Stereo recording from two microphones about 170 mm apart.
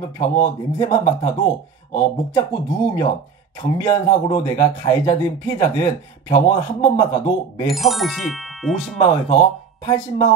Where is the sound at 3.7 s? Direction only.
20° left (ahead or behind).